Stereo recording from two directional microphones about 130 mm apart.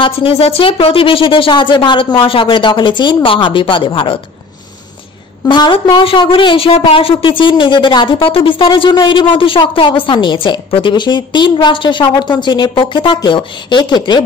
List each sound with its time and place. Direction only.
0.0 s a woman's voice: 45° left (ahead or behind)
5.5 s a woman's voice: 35° left (ahead or behind)